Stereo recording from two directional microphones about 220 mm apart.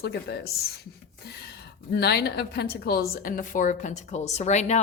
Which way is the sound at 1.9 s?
50° left (ahead or behind).